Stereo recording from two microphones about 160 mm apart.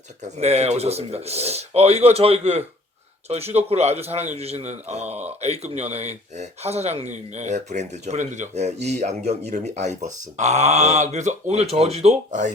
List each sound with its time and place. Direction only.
0.2 s speech: 45° right (ahead or behind)